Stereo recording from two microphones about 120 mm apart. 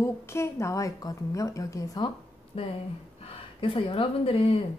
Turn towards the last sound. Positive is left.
turn(degrees=55)  # may be behind; listen again after turning